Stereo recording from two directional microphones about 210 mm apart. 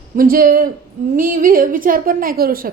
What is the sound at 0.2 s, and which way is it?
A woman's voice, 45° right (ahead or behind).